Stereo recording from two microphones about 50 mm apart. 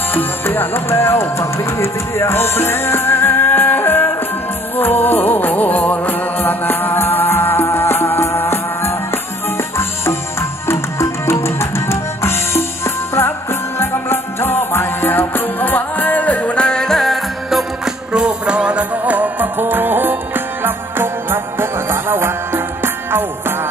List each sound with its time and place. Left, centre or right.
0.1 s music: left
0.8 s music: left
10.7 s music: left
16.6 s music: centre
17.0 s music: centre
18.1 s music: centre; by 22.6 s right